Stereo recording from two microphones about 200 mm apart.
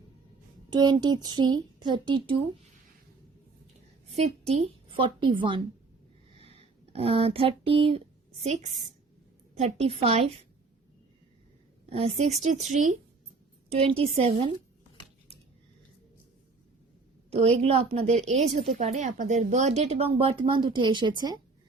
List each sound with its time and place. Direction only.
0.7 s a child's voice: 20° right (ahead or behind)
4.1 s a child's voice: 35° right (ahead or behind)
9.6 s a child's voice: 30° right (ahead or behind)
11.9 s a woman's voice: 30° right (ahead or behind)
17.3 s a woman's voice: 30° right (ahead or behind)